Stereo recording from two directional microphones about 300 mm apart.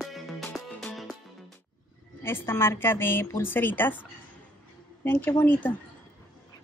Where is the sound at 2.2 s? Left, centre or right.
Centre.